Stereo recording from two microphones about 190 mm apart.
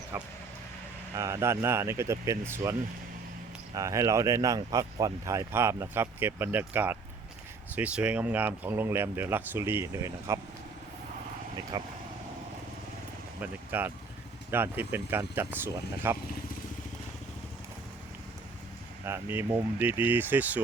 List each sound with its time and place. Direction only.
0.1 s speech: 10° right (ahead or behind)
3.8 s speech: 15° right (ahead or behind)
11.7 s speech: 20° right (ahead or behind)
13.4 s speech: 10° right (ahead or behind)
19.0 s speech: 10° right (ahead or behind)